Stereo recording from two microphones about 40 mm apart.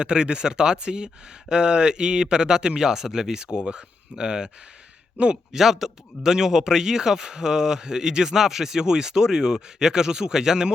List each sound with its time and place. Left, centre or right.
0.0 s speech: right
5.5 s a man's voice: centre